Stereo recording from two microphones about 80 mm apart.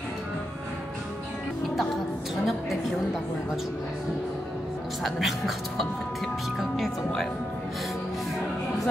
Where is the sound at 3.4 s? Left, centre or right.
Centre.